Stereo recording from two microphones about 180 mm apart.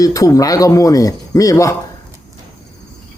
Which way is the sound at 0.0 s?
20° left (ahead or behind).